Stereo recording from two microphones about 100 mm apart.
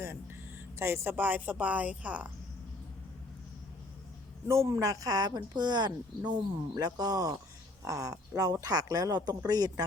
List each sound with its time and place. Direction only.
0.8 s a woman's voice: 25° right (ahead or behind)
4.4 s speech: 30° right (ahead or behind)